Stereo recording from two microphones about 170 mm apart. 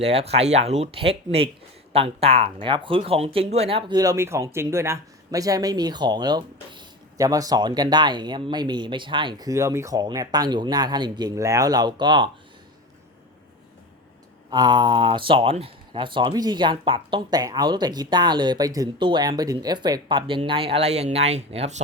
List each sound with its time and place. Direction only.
0.0 s speech: 35° right (ahead or behind)
14.5 s speech: 25° right (ahead or behind); by 21.8 s 40° right (ahead or behind)